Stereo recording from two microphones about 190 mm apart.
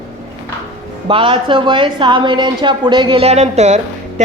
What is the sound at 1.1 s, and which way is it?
A woman's voice, 25° right (ahead or behind).